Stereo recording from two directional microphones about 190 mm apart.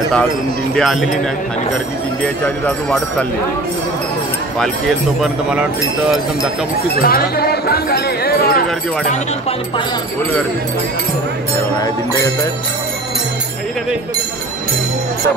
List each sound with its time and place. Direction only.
0.7 s speech: centre (ahead or behind)
2.2 s speech: 5° left (ahead or behind)
5.2 s speech: 5° right (ahead or behind)
7.0 s speech: 50° left (ahead or behind)